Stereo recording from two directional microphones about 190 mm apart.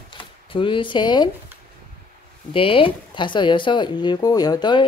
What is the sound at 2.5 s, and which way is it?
Speech, 30° left (ahead or behind).